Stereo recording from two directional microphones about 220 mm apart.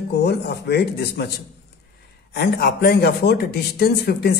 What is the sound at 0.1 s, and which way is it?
A man's voice, 50° left (ahead or behind).